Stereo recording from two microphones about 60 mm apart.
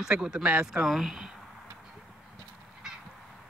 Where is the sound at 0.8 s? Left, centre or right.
Centre.